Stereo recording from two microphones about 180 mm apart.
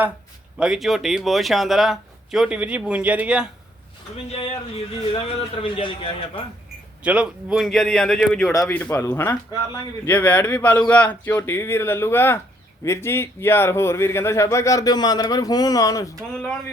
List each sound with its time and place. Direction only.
0.6 s speech: centre (ahead or behind)
4.9 s a man's voice: 30° left (ahead or behind)
7.0 s speech: 5° right (ahead or behind); by 16.1 s 20° left (ahead or behind)